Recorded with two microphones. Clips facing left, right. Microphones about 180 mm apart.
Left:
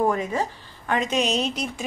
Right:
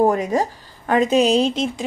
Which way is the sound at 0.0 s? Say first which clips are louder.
Right 6 dB; 40° right (ahead or behind).